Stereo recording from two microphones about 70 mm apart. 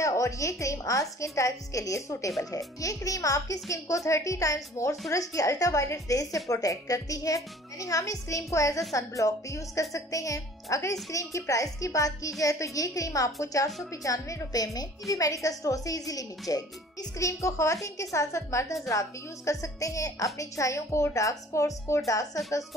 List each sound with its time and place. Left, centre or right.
0.0 s a woman's voice: left
17.2 s a child's voice: left